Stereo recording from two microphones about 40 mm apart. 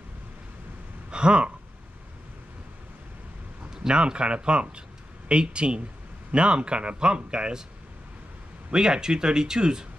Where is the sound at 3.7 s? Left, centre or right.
Centre.